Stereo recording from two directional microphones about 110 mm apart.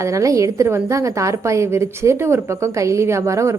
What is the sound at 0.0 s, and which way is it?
A woman's voice, 30° right (ahead or behind).